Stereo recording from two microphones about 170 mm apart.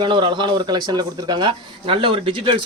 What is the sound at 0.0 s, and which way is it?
Speech, 30° right (ahead or behind).